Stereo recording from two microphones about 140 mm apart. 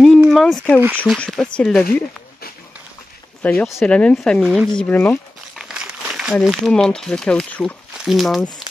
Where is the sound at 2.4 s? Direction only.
90° left.